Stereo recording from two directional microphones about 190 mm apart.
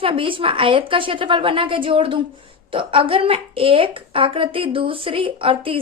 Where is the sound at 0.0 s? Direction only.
25° right (ahead or behind).